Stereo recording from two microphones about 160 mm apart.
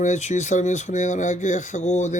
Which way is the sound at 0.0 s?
45° left (ahead or behind).